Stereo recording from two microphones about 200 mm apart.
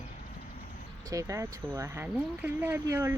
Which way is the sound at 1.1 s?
15° right (ahead or behind).